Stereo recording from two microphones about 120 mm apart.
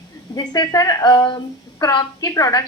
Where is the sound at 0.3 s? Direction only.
35° left (ahead or behind).